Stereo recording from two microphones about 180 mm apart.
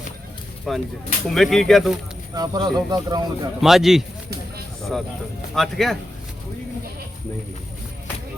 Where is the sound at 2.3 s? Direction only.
20° right (ahead or behind).